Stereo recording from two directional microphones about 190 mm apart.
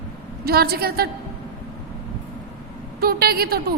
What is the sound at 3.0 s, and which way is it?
Speech, 55° right (ahead or behind).